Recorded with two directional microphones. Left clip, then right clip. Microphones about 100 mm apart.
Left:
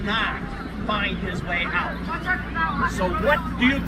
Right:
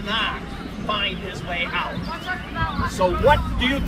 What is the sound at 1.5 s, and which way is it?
Speech, 35° right (ahead or behind).